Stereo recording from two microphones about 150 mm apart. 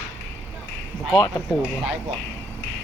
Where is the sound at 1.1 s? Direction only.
30° left (ahead or behind).